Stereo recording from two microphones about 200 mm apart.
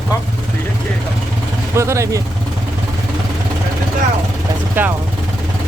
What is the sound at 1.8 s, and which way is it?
Speech, 15° right (ahead or behind).